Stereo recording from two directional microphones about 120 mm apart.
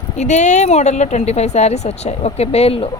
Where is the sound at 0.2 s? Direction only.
80° left; by 2.9 s 55° left (ahead or behind).